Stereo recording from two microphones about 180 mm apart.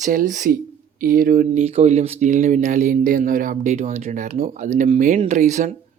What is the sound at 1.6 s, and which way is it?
Speech, 35° right (ahead or behind).